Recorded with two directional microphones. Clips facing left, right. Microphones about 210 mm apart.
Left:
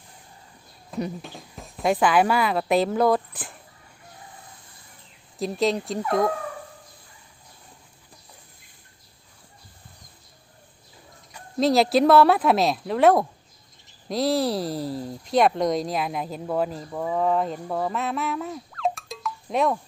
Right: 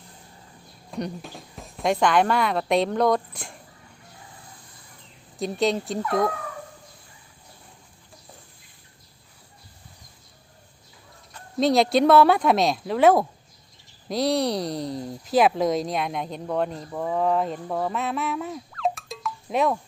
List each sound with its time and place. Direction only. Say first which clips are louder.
0.9 s speech: left 1 dB; centre (ahead or behind)
5.4 s speech: even; centre (ahead or behind)
11.6 s speech: even; centre (ahead or behind)